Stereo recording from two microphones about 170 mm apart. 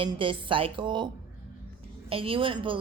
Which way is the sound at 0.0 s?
30° right (ahead or behind).